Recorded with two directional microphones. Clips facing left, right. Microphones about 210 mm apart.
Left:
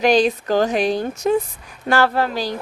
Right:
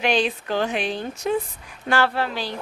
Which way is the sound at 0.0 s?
40° left (ahead or behind).